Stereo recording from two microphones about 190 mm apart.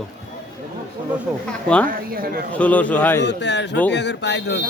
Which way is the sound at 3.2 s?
65° left (ahead or behind).